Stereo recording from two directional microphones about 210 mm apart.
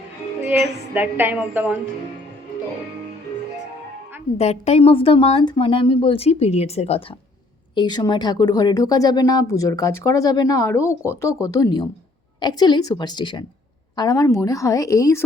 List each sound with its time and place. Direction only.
0.9 s a woman's voice: 10° right (ahead or behind)
4.4 s speech: 30° left (ahead or behind); by 15.2 s 15° left (ahead or behind)